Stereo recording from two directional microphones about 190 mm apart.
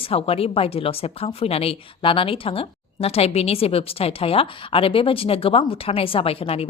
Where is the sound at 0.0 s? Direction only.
30° left (ahead or behind).